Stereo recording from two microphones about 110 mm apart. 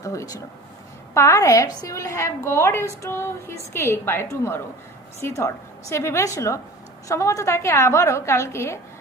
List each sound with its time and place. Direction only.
0.0 s a woman's voice: 30° left (ahead or behind)